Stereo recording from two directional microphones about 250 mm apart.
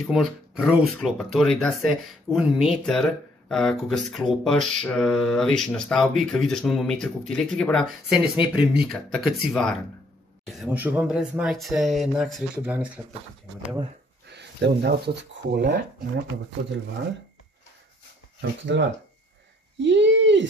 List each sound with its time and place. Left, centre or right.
0.0 s speech: centre
14.2 s a sound: right
15.5 s speech: right
18.4 s speech: right